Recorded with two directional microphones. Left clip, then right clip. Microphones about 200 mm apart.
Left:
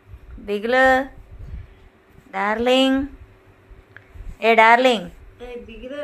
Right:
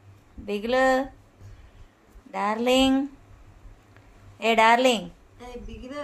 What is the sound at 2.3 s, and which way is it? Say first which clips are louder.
Speech: left 5 dB; 5° left (ahead or behind).